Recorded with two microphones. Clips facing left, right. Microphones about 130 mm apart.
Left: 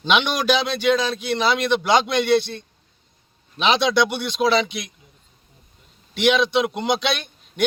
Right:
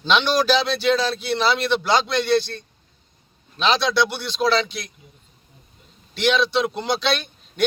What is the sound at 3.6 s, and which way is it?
Speech, 15° left (ahead or behind).